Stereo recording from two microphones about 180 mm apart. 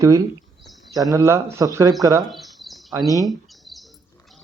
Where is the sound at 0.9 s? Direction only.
20° right (ahead or behind).